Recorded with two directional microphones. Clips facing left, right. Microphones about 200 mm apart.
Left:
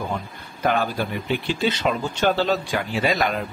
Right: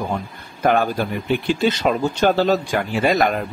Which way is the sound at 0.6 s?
50° right (ahead or behind).